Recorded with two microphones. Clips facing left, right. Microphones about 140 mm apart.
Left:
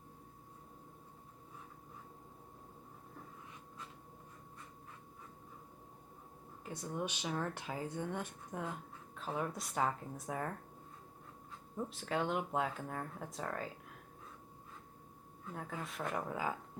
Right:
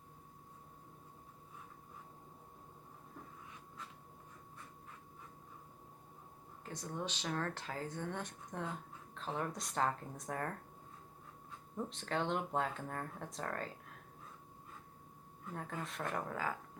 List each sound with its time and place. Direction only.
6.7 s speech: 10° left (ahead or behind)
11.8 s speech: 5° left (ahead or behind)
15.5 s speech: 5° left (ahead or behind)